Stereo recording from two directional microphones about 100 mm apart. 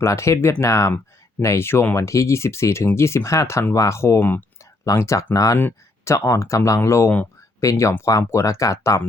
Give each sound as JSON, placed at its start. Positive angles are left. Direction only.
{"t": 0.0, "sound": "speech", "side_deg": 30}
{"t": 4.2, "sound": "speech", "side_deg": 15}
{"t": 4.9, "sound": "speech", "side_deg": 30}
{"t": 5.5, "sound": "speech", "side_deg": 25}